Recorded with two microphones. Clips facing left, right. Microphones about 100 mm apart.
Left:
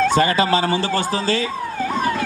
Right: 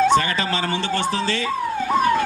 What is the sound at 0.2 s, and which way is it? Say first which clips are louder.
A woman's voice: left 6 dB; 40° left (ahead or behind).